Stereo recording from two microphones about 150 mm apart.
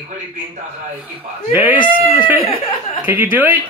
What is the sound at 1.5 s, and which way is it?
Speech, 10° right (ahead or behind).